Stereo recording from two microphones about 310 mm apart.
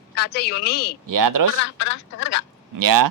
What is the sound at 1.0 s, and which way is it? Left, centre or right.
Speech, right.